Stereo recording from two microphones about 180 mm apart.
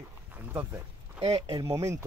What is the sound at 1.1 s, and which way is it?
Speech, 35° right (ahead or behind).